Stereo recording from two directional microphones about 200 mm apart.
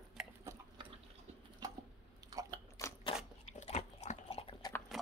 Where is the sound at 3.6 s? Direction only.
35° left (ahead or behind).